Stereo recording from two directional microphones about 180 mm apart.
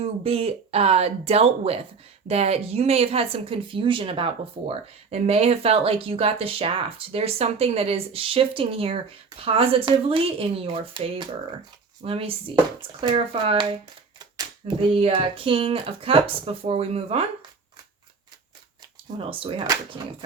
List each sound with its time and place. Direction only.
0.0 s speech: 35° right (ahead or behind)
19.2 s speech: 30° right (ahead or behind)